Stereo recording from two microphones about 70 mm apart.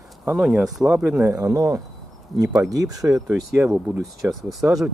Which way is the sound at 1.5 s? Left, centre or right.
Right.